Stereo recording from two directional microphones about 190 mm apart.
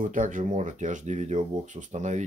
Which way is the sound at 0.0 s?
45° right (ahead or behind).